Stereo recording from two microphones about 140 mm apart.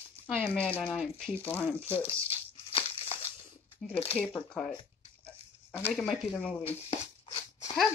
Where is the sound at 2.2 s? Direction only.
40° left (ahead or behind).